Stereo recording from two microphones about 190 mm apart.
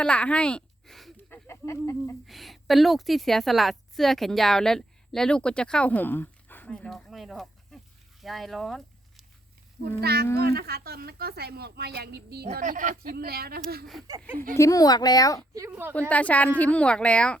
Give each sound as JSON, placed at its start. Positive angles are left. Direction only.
{"t": 0.0, "sound": "a sound", "side_deg": 5}
{"t": 2.2, "sound": "a woman's voice", "side_deg": 0}
{"t": 9.8, "sound": "speech", "side_deg": -55}
{"t": 12.5, "sound": "speech", "side_deg": -45}
{"t": 14.5, "sound": "speech", "side_deg": 15}
{"t": 15.5, "sound": "a woman's voice", "side_deg": -15}
{"t": 16.0, "sound": "speech", "side_deg": 5}